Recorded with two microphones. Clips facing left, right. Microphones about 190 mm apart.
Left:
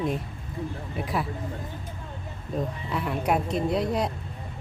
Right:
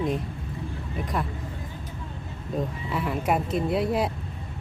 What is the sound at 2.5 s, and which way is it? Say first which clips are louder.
A woman's voice: right 1 dB; centre (ahead or behind).